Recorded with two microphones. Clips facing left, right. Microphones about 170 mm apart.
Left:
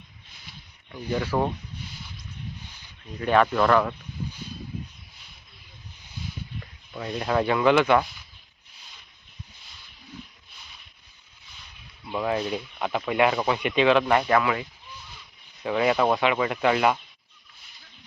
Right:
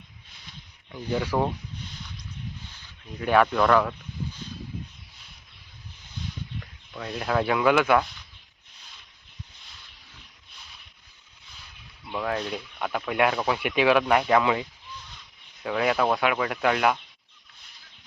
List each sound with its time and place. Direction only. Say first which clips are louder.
1.1 s speech: even; 10° right (ahead or behind)
3.2 s speech: even; 10° right (ahead or behind)
3.4 s speech: even; centre (ahead or behind)
6.9 s speech: left 1 dB; centre (ahead or behind)
12.0 s speech: left 3 dB; 5° left (ahead or behind)
14.4 s speech: right 2 dB; 20° right (ahead or behind)
15.6 s speech: left 2 dB; centre (ahead or behind)